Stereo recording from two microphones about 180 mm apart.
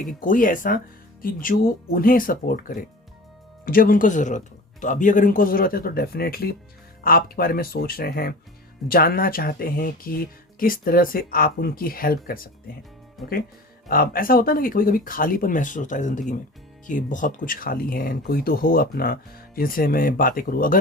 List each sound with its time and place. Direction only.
0.2 s speech: 50° left (ahead or behind)
13.2 s speech: centre (ahead or behind)
13.8 s speech: 55° left (ahead or behind)